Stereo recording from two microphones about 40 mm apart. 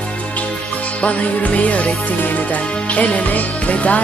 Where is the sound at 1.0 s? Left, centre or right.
Left.